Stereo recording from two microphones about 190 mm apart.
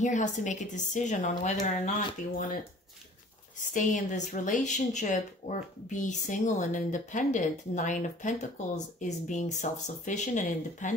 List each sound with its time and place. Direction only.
0.0 s speech: 40° left (ahead or behind)
3.7 s speech: 40° left (ahead or behind)